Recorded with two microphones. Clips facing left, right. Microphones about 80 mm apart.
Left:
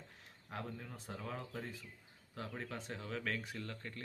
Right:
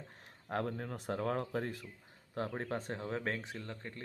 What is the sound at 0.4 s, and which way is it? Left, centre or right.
Speech, right.